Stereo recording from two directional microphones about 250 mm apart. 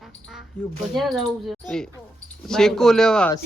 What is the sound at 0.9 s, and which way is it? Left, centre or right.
Speech, centre.